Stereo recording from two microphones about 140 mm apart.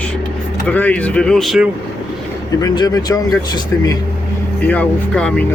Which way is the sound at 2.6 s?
30° left (ahead or behind).